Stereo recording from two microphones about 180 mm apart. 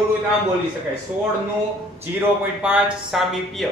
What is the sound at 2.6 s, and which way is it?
A man's voice, 5° right (ahead or behind).